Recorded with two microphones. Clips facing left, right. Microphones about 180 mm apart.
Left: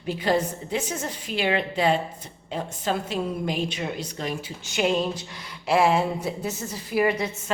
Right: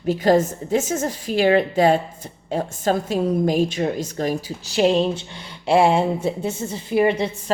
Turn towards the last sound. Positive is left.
turn(degrees=-30)  # may be behind; listen again after turning